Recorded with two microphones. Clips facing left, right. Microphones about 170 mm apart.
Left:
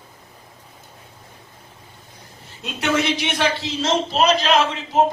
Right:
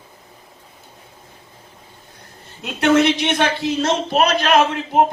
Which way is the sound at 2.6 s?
60° right (ahead or behind).